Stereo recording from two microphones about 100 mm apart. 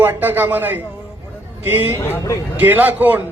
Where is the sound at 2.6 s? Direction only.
20° right (ahead or behind).